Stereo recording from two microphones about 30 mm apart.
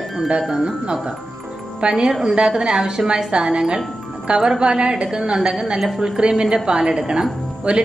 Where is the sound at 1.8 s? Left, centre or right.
Right.